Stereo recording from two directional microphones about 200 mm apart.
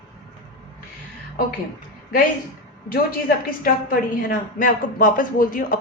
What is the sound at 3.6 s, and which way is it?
A woman's voice, 45° left (ahead or behind).